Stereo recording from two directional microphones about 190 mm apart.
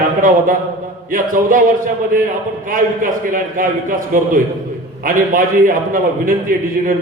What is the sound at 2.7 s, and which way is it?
Speech, 45° right (ahead or behind).